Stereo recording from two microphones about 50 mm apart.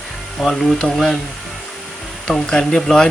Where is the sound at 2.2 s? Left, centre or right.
Centre.